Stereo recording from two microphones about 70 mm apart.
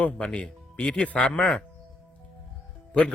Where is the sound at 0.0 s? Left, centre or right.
Centre.